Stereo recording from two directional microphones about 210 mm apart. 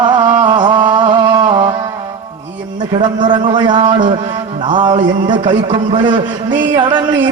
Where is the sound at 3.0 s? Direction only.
20° right (ahead or behind).